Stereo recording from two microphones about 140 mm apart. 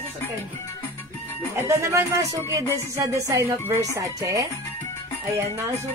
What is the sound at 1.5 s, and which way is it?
A woman's voice, 20° right (ahead or behind).